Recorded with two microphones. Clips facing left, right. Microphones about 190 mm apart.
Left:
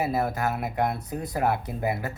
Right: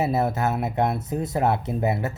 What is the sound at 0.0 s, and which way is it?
Speech, 25° right (ahead or behind).